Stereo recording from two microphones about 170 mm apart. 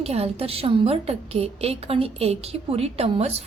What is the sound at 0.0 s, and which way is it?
A woman's voice, 35° right (ahead or behind).